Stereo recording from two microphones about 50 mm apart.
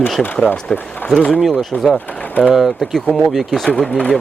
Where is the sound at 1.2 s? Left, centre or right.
Left.